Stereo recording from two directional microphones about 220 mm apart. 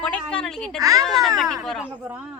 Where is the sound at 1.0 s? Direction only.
Centre (ahead or behind).